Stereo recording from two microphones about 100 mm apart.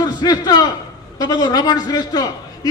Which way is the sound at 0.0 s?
45° left (ahead or behind).